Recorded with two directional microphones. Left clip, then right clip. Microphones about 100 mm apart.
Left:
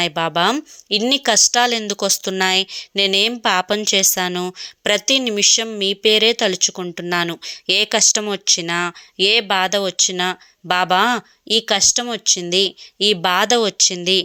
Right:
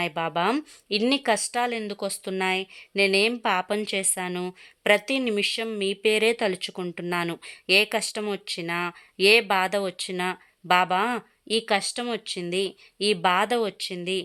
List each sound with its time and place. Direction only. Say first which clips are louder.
0.0 s speech: left 8 dB; 35° left (ahead or behind)
0.5 s speech: left 7 dB; 15° left (ahead or behind)
1.9 s speech: left 11 dB; 50° left (ahead or behind)
2.4 s speech: left 7 dB; 40° left (ahead or behind)
4.1 s speech: left 10 dB; 45° left (ahead or behind)
4.6 s speech: left 2 dB; 35° left (ahead or behind)
9.1 s speech: left 3 dB; 20° left (ahead or behind); by 11.2 s 40° left (ahead or behind)
11.4 s speech: left 8 dB; 25° left (ahead or behind)
13.5 s speech: left 10 dB; 45° left (ahead or behind)